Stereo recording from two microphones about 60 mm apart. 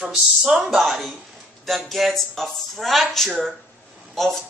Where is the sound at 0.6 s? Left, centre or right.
Centre.